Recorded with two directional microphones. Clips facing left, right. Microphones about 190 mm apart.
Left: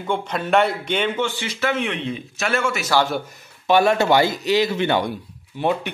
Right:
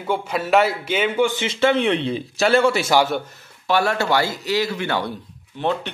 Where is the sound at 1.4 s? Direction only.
25° right (ahead or behind).